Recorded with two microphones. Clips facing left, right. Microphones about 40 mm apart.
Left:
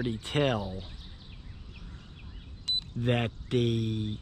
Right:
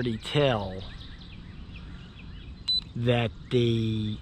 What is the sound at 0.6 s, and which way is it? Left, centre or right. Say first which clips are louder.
Speech: right 3 dB; right.